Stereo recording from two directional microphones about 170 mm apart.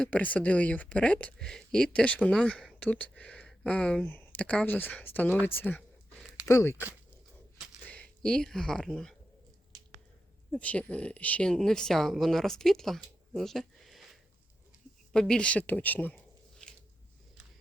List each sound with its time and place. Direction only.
0.0 s speech: 10° left (ahead or behind)
5.5 s a sound: 10° left (ahead or behind)
6.5 s speech: 15° left (ahead or behind)
7.9 s speech: 5° left (ahead or behind)
10.5 s speech: 10° left (ahead or behind)